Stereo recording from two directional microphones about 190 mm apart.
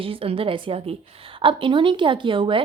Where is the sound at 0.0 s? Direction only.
30° right (ahead or behind).